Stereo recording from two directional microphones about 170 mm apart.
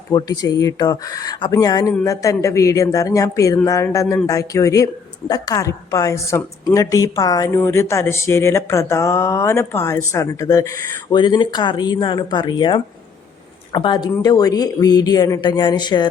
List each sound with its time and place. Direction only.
0.1 s a woman's voice: 20° left (ahead or behind)